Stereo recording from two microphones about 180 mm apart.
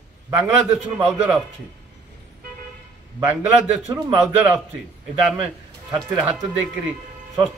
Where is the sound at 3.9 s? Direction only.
15° right (ahead or behind).